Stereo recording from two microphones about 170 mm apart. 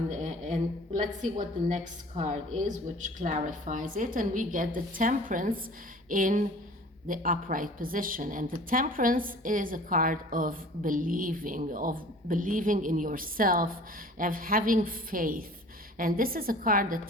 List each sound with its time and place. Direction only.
0.2 s a woman's voice: 45° right (ahead or behind)